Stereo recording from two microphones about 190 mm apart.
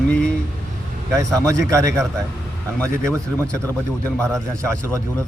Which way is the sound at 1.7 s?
15° right (ahead or behind).